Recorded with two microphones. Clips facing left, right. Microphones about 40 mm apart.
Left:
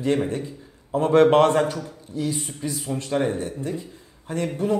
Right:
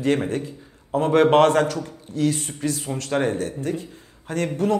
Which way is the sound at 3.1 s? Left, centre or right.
Right.